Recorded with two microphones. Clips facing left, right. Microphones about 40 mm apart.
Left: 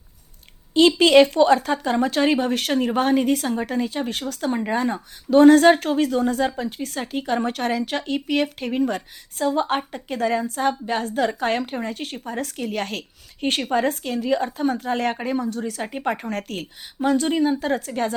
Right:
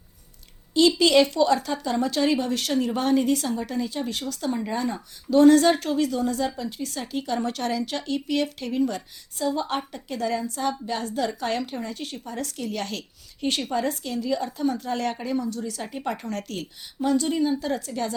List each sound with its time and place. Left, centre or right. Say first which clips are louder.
0.7 s a woman's voice: left 4 dB; left